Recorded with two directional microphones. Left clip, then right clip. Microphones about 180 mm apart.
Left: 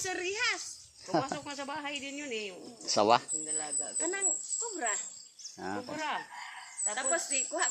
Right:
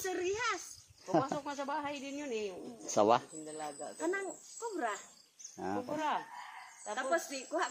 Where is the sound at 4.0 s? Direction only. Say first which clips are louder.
Left 1 dB; 25° right (ahead or behind).